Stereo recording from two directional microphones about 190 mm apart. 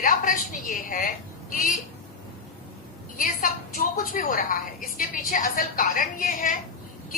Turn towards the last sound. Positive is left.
turn(degrees=45)  # may be behind; listen again after turning